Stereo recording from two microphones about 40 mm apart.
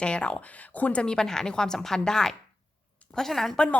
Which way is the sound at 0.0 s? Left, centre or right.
Left.